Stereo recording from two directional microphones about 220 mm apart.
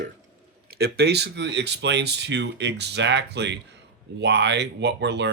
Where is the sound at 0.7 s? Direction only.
45° right (ahead or behind).